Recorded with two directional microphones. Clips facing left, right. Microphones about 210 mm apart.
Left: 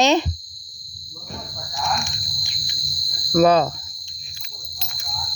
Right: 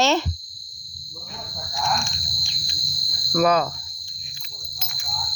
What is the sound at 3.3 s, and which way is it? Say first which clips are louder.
Speech: left 4 dB; 30° left (ahead or behind).